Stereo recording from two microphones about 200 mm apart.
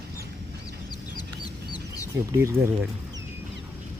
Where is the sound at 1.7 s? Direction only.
15° left (ahead or behind).